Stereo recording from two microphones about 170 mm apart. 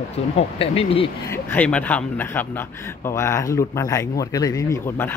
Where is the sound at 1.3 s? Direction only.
10° left (ahead or behind).